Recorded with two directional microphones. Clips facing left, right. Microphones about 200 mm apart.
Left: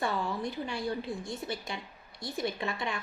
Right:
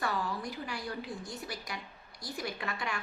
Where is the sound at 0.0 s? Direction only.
25° left (ahead or behind).